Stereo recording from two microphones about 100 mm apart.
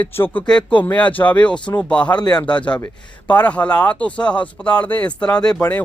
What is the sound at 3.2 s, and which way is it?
A man's voice, 15° left (ahead or behind).